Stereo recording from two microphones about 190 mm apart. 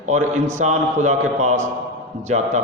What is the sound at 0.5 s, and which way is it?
A man's voice, 40° right (ahead or behind).